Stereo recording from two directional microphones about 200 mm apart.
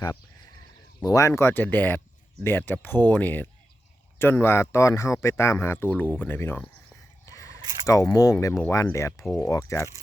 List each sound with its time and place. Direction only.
1.0 s speech: 15° left (ahead or behind)
7.3 s a sound: 15° left (ahead or behind)
8.1 s speech: 15° left (ahead or behind)